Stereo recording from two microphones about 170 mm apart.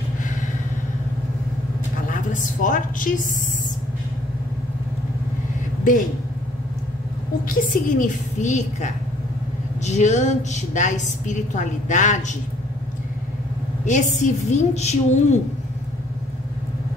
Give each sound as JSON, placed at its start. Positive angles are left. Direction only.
{"t": 2.0, "sound": "a woman's voice", "side_deg": 50}
{"t": 7.4, "sound": "a woman's voice", "side_deg": 50}
{"t": 13.8, "sound": "a woman's voice", "side_deg": 45}